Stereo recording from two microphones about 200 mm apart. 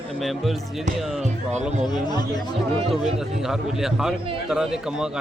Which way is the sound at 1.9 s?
20° left (ahead or behind).